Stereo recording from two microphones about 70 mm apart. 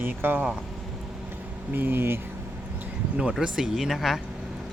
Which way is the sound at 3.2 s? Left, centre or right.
Centre.